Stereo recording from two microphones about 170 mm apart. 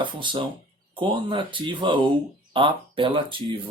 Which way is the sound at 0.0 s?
30° right (ahead or behind).